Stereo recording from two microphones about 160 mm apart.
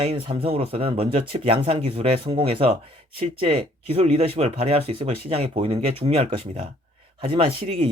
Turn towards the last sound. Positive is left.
turn(degrees=-35)  # may be behind; listen again after turning